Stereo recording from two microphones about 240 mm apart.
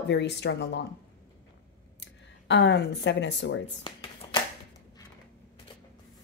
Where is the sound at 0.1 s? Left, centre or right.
Left.